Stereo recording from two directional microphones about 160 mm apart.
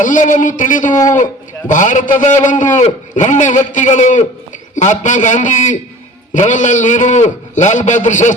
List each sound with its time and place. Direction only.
0.0 s a man's voice: 50° left (ahead or behind)